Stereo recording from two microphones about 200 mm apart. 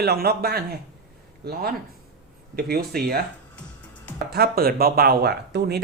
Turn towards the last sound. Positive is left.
turn(degrees=-55)  # may be behind; listen again after turning